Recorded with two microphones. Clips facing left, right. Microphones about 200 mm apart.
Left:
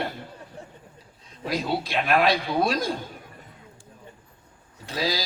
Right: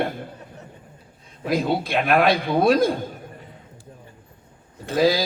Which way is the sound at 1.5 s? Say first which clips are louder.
Right 5 dB; 55° right (ahead or behind).